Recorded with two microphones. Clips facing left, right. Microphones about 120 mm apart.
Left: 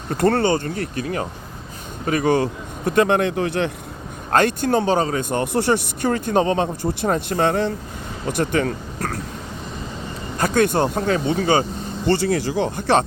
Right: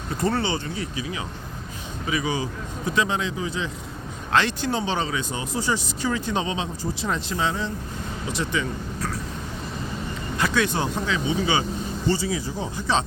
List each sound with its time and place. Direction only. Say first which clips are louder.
0.2 s speech: left 7 dB; 55° left (ahead or behind)
4.3 s speech: left 5 dB; 50° left (ahead or behind)
10.3 s speech: left 6 dB; 45° left (ahead or behind)
12.0 s speech: left 6 dB; 65° left (ahead or behind)